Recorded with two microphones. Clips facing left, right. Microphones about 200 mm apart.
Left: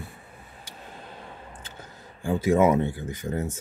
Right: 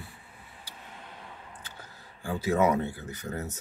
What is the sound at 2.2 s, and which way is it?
Speech, 25° left (ahead or behind).